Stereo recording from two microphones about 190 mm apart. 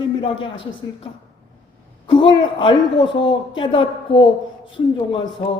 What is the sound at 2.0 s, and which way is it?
A man's voice, 25° left (ahead or behind).